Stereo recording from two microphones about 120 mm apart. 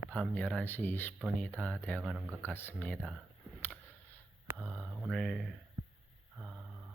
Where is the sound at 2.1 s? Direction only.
15° right (ahead or behind).